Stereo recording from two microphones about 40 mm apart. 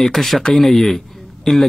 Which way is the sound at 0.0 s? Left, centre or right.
Centre.